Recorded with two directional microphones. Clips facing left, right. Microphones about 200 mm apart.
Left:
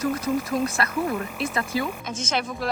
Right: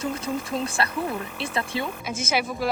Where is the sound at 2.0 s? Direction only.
10° right (ahead or behind).